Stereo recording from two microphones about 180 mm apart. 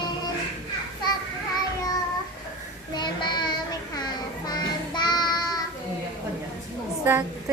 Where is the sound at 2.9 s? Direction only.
25° left (ahead or behind).